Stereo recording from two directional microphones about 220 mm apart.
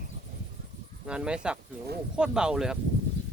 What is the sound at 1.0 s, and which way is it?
Speech, 5° right (ahead or behind).